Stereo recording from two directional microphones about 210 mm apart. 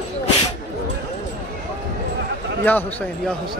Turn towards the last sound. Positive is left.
turn(degrees=10)  # may be behind; listen again after turning